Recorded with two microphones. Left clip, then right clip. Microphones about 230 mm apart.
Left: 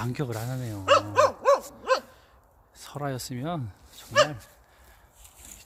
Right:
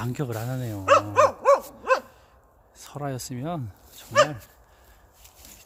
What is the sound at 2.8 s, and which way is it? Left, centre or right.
Speech, centre.